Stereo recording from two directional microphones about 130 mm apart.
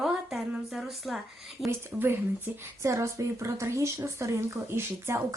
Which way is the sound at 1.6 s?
15° right (ahead or behind).